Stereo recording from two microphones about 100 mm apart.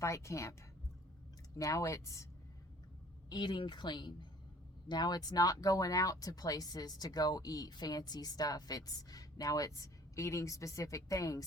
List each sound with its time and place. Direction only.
0.0 s speech: 30° left (ahead or behind)
1.5 s speech: 35° left (ahead or behind)
3.2 s speech: 50° left (ahead or behind)